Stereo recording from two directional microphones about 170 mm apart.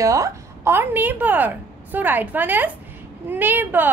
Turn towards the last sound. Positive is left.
turn(degrees=-10)  # may be behind; listen again after turning